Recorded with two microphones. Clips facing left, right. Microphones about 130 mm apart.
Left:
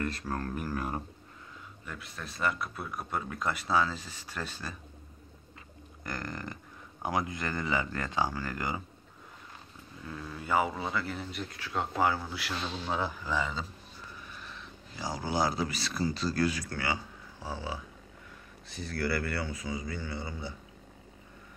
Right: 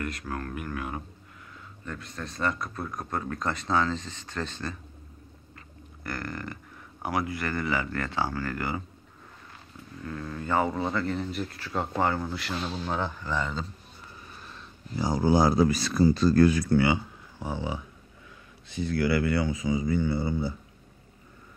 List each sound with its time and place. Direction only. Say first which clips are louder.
0.0 s speech: even; 30° left (ahead or behind)
1.9 s speech: right 5 dB; 5° left (ahead or behind)
6.0 s a man's voice: right 3 dB; 20° left (ahead or behind)
10.0 s a man's voice: right 4 dB; 15° left (ahead or behind)
14.3 s speech: even; 40° right (ahead or behind)
16.7 s speech: right 11 dB; 20° right (ahead or behind)